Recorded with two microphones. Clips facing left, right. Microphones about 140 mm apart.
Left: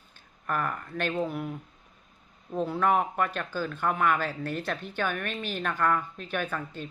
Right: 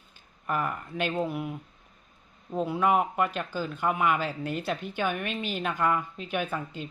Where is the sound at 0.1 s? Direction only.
10° right (ahead or behind).